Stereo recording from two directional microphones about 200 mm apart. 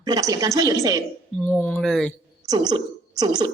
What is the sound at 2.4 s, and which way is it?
A woman's voice, 20° right (ahead or behind).